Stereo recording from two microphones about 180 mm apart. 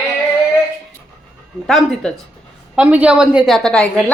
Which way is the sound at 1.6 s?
Centre (ahead or behind).